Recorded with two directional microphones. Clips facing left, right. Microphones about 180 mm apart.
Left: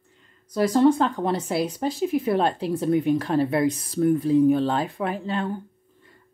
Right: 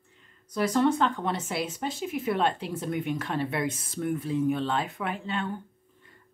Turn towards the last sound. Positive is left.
turn(degrees=35)  # may be behind; listen again after turning